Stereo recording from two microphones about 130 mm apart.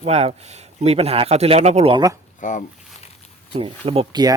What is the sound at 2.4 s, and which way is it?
Speech, 75° left (ahead or behind).